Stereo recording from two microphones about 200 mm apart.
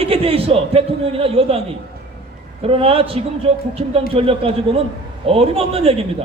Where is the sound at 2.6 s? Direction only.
30° right (ahead or behind).